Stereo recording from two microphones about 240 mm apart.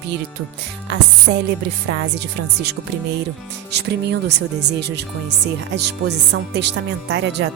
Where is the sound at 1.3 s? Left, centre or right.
Right.